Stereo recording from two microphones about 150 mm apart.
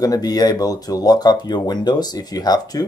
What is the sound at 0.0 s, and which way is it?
Speech, 25° left (ahead or behind).